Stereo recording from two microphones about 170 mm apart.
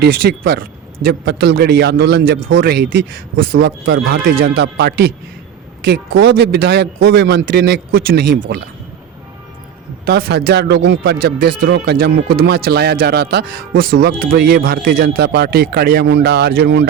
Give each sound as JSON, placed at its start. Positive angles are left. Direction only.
{"t": 0.0, "sound": "speech", "side_deg": -85}
{"t": 5.8, "sound": "speech", "side_deg": -80}
{"t": 10.1, "sound": "speech", "side_deg": -70}